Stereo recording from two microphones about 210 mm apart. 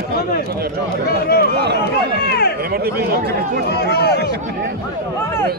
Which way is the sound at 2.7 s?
45° right (ahead or behind).